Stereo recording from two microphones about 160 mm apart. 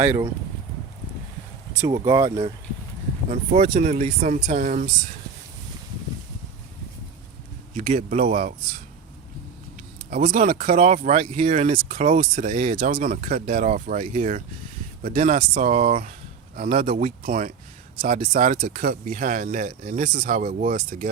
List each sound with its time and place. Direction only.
0.0 s speech: 15° right (ahead or behind)
1.9 s speech: 25° right (ahead or behind)
3.2 s speech: 45° right (ahead or behind)
7.8 s speech: 50° right (ahead or behind)
10.1 s speech: 55° right (ahead or behind)
15.9 s speech: 45° right (ahead or behind)
16.6 s speech: 60° right (ahead or behind)
18.0 s speech: 65° right (ahead or behind)